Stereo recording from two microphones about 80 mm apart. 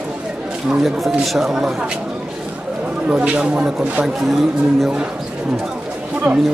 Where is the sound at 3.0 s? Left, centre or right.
Centre.